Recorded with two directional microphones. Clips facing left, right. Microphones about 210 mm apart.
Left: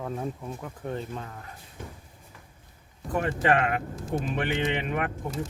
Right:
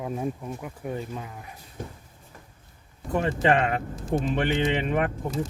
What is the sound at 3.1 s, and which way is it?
Speech, 25° right (ahead or behind).